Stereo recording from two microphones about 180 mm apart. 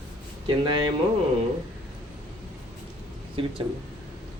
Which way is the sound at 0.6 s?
25° right (ahead or behind).